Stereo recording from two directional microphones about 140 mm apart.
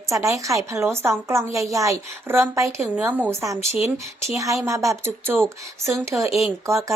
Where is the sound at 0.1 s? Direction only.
20° right (ahead or behind).